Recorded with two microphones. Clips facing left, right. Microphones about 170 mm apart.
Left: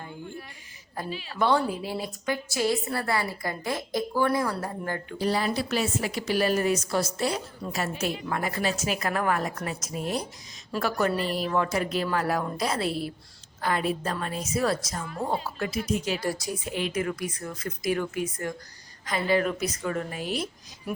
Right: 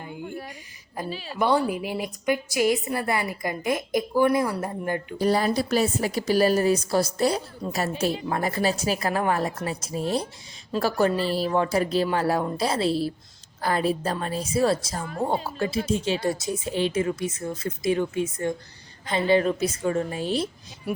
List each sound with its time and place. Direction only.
1.0 s a woman's voice: 15° right (ahead or behind)
5.1 s a woman's voice: 45° right (ahead or behind)